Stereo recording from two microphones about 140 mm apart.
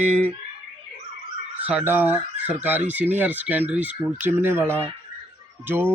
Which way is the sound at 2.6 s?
10° right (ahead or behind).